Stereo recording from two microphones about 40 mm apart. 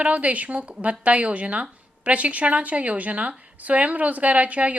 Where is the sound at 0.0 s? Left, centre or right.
Right.